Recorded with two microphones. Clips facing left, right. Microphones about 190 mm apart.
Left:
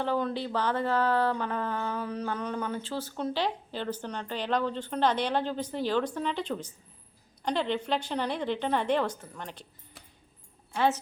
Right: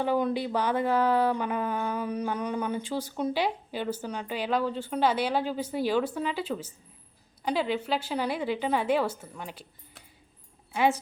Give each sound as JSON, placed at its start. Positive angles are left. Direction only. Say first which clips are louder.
{"t": 0.0, "sound": "speech", "louder": "right 3 dB", "side_deg": -15}